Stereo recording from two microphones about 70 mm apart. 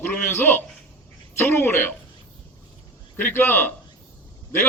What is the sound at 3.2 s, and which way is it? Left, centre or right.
Speech, left.